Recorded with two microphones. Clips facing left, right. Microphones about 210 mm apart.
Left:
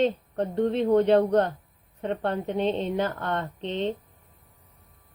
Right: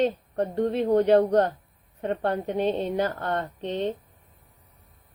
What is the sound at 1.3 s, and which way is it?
Speech, 40° right (ahead or behind).